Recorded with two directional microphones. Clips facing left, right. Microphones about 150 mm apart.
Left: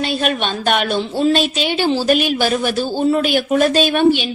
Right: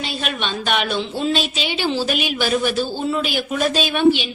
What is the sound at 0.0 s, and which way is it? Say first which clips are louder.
Speech: left 7 dB; 50° left (ahead or behind).